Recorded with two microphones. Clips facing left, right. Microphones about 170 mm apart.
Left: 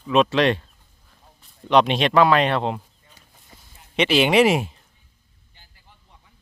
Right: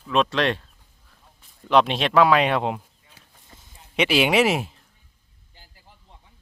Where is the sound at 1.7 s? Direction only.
Centre (ahead or behind).